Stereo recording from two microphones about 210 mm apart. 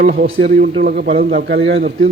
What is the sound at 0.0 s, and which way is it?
A man's voice, 40° right (ahead or behind).